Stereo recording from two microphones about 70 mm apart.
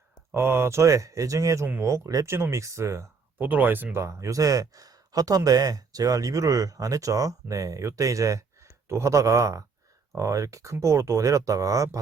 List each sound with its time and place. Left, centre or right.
0.3 s speech: right
3.3 s speech: right
3.9 s speech: right